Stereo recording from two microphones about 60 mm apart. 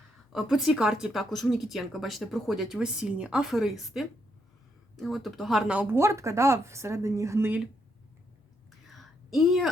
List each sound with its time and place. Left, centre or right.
0.3 s speech: centre
3.5 s speech: centre
5.9 s speech: right
8.9 s a sound: centre